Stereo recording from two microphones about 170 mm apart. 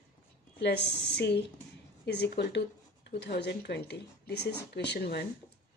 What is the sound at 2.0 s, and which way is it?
Speech, 75° left (ahead or behind).